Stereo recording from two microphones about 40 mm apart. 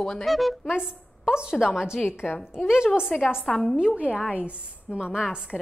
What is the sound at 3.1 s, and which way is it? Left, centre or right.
Speech, centre.